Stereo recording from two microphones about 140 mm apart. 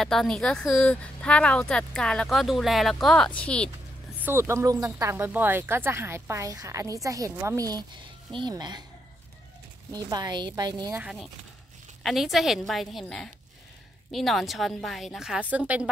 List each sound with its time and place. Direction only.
0.0 s speech: 5° left (ahead or behind)
4.2 s speech: 15° right (ahead or behind)
9.9 s speech: 30° right (ahead or behind)
11.0 s speech: 5° right (ahead or behind)